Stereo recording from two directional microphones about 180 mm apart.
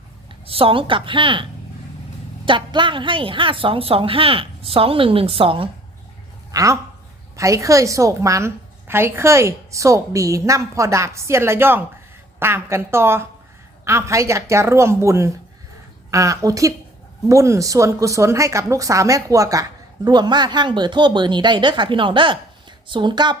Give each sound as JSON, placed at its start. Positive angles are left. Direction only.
{"t": 0.4, "sound": "a woman's voice", "side_deg": -30}
{"t": 6.5, "sound": "a woman's voice", "side_deg": -20}